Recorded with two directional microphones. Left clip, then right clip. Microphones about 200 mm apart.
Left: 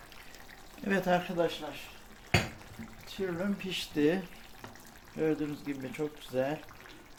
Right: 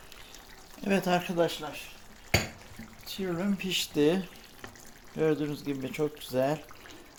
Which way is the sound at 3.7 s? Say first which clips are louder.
Right 4 dB; 30° right (ahead or behind).